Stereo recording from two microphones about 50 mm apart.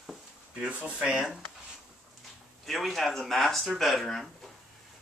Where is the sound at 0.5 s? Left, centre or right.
Right.